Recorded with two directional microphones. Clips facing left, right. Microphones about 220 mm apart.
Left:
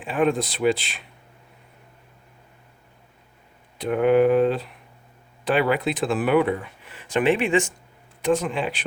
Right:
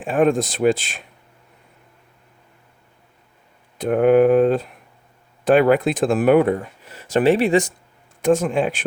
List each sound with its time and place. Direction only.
0.0 s speech: 45° right (ahead or behind)
3.8 s speech: 45° right (ahead or behind)